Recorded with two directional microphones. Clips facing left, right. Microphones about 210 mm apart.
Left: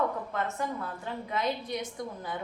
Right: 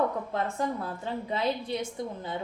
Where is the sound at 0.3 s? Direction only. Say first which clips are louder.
Right 5 dB; 35° right (ahead or behind).